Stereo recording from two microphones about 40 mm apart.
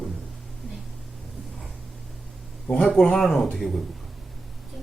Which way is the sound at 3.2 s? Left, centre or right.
Centre.